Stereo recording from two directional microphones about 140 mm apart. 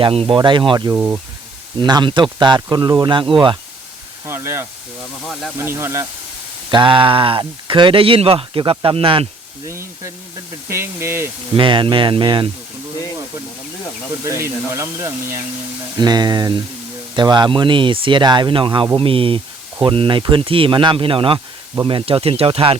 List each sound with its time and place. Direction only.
0.0 s speech: 40° right (ahead or behind)
0.9 s speech: 15° right (ahead or behind)
1.8 s speech: 35° right (ahead or behind)
4.3 s spray: 20° right (ahead or behind)
5.2 s speech: centre (ahead or behind)
5.5 s speech: 15° right (ahead or behind)
6.7 s speech: 35° right (ahead or behind)
9.6 s speech: 20° right (ahead or behind)
11.5 s speech: 35° right (ahead or behind)
13.8 s speech: 25° left (ahead or behind)
14.4 s speech: 20° right (ahead or behind)
16.0 s speech: 30° right (ahead or behind)